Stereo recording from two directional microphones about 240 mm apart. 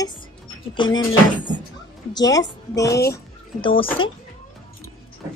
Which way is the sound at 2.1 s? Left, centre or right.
Centre.